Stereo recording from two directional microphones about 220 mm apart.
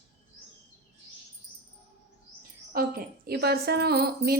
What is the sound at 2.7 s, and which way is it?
A woman's voice, 40° right (ahead or behind).